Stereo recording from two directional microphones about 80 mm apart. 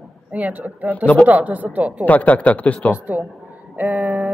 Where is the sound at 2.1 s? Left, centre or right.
Centre.